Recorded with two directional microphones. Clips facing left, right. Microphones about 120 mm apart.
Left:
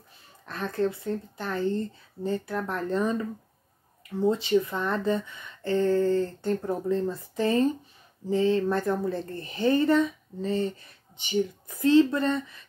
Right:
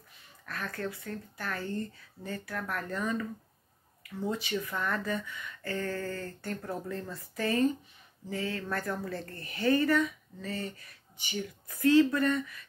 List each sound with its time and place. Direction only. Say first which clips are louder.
0.5 s speech: left 9 dB; 25° left (ahead or behind)